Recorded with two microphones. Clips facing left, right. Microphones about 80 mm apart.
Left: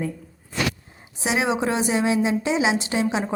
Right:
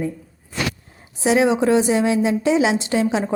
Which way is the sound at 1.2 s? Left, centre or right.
Left.